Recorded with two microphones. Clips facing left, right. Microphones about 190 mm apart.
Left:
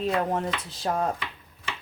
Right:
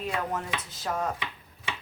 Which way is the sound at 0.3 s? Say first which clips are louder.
Left 5 dB; 30° left (ahead or behind).